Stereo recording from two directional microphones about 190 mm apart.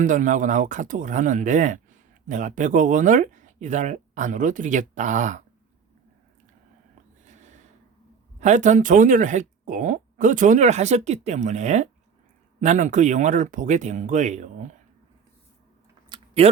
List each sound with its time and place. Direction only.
0.0 s speech: 40° right (ahead or behind)
7.3 s snort: 40° right (ahead or behind)
8.4 s speech: 40° right (ahead or behind)
16.0 s a sound: 30° right (ahead or behind)